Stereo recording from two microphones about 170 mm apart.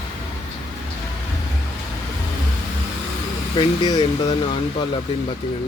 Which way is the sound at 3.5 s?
30° left (ahead or behind).